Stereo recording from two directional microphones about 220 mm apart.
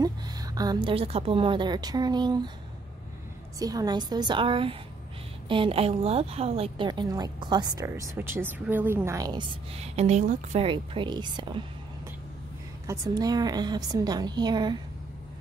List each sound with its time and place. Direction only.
0.0 s a woman's voice: 15° right (ahead or behind)
3.5 s a woman's voice: 15° right (ahead or behind)
12.8 s a woman's voice: 15° right (ahead or behind)